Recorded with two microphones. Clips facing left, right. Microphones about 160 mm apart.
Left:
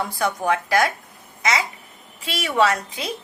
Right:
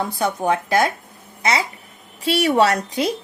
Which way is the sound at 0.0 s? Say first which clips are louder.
Right 2 dB; 20° right (ahead or behind).